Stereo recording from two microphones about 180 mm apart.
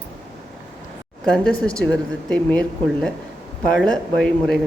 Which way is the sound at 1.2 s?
5° left (ahead or behind).